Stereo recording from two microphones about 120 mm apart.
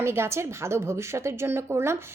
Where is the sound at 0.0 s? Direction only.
20° right (ahead or behind).